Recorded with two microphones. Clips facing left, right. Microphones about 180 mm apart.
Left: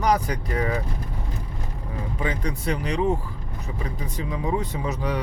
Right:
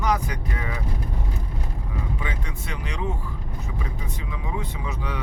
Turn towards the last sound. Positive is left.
turn(degrees=40)  # may be behind; listen again after turning